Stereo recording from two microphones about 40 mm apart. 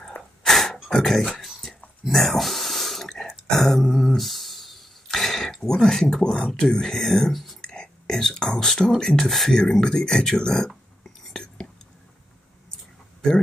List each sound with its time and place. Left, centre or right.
0.2 s sneeze: left
0.5 s a sound: centre
0.8 s speech: centre
1.4 s a sound: centre
3.1 s dog: centre
5.1 s a sound: centre
6.2 s speech: centre
7.6 s whispering: centre
8.2 s speech: centre